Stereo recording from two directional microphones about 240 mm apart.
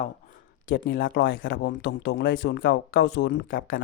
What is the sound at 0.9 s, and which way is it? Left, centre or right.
Speech, left.